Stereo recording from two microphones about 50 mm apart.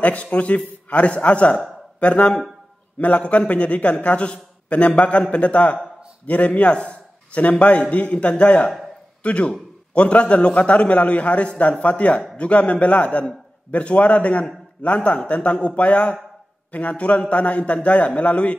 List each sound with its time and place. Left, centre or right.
0.0 s a man's voice: left